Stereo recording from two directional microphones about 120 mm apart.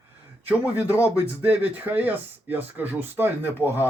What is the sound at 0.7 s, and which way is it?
Speech, 25° left (ahead or behind).